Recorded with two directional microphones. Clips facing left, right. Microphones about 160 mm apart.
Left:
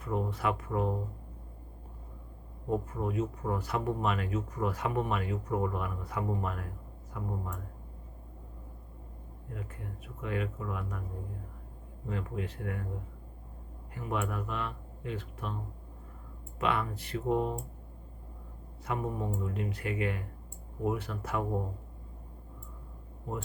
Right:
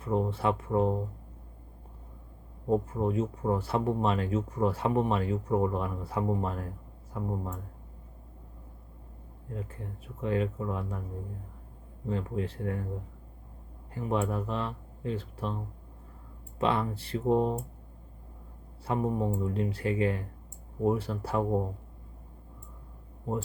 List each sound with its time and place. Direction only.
0.0 s speech: 30° right (ahead or behind)
2.6 s speech: 30° right (ahead or behind)
9.5 s speech: 30° right (ahead or behind)
12.0 s speech: 30° right (ahead or behind)
13.9 s speech: 30° right (ahead or behind)
16.6 s speech: 30° right (ahead or behind)
18.9 s speech: 30° right (ahead or behind)